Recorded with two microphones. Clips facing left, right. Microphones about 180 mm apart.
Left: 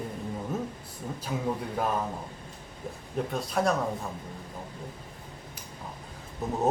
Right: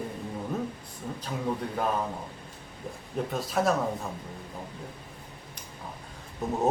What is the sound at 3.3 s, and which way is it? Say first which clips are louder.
Speech: right 1 dB; centre (ahead or behind).